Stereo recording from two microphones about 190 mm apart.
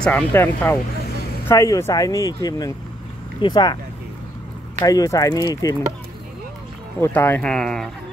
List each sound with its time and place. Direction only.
0.0 s speech: 10° left (ahead or behind)
4.8 s speech: 20° left (ahead or behind)
7.0 s speech: 10° left (ahead or behind)